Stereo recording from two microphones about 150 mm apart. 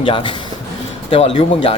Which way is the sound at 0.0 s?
35° left (ahead or behind).